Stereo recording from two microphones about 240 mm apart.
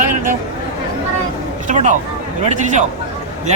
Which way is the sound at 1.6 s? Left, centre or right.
Right.